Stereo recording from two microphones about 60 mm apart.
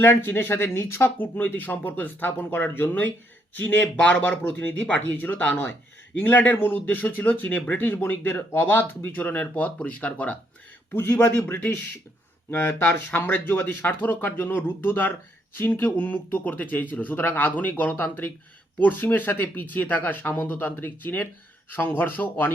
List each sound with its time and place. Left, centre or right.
0.0 s speech: left
10.9 s speech: left